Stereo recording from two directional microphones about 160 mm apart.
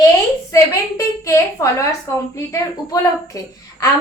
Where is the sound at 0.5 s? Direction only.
20° left (ahead or behind).